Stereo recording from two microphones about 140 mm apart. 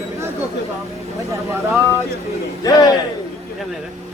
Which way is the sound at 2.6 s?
25° left (ahead or behind).